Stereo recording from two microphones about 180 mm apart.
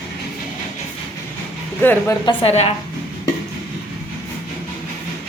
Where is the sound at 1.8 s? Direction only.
10° left (ahead or behind).